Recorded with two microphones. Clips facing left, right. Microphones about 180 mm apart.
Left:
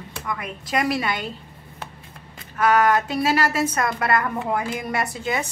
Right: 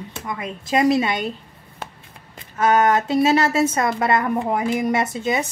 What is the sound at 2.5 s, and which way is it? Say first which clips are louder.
A woman's voice: right 1 dB; 25° right (ahead or behind).